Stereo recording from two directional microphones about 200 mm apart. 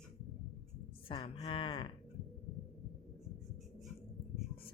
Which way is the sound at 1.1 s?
25° left (ahead or behind).